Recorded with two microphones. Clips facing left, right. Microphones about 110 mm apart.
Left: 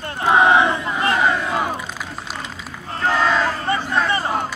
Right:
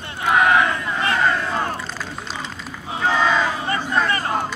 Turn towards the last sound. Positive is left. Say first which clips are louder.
# even
turn(degrees=0)  # may be behind; listen again after turning